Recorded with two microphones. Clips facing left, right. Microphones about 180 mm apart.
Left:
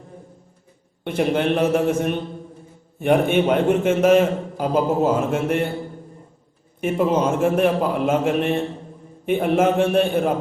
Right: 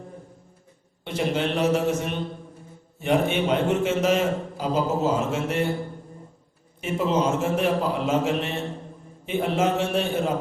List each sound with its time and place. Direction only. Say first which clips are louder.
1.0 s a man's voice: left 5 dB; 55° left (ahead or behind)
6.8 s a man's voice: left 4 dB; 55° left (ahead or behind)